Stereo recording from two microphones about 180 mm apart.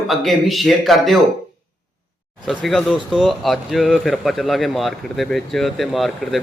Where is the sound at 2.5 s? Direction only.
Centre (ahead or behind).